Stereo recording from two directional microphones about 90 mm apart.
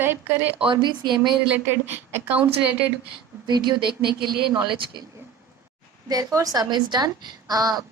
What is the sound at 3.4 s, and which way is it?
Speech, 55° right (ahead or behind).